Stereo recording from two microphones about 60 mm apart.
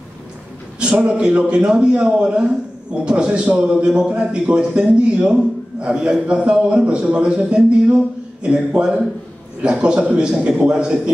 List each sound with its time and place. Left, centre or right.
0.7 s a man's voice: centre